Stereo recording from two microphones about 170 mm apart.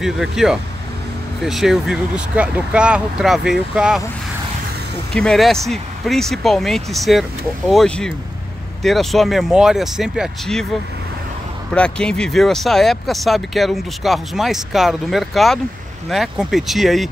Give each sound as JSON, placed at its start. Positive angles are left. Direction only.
{"t": 0.0, "sound": "speech", "side_deg": 0}
{"t": 5.1, "sound": "speech", "side_deg": 5}
{"t": 11.7, "sound": "speech", "side_deg": 5}